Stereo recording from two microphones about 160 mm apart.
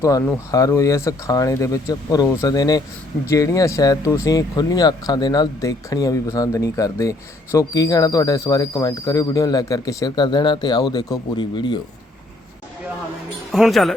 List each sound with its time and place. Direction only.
0.0 s speech: 20° left (ahead or behind)
13.5 s speech: centre (ahead or behind)